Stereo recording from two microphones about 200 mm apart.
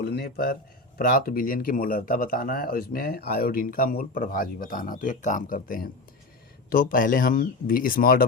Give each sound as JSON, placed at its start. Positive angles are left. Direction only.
{"t": 0.0, "sound": "speech", "side_deg": 50}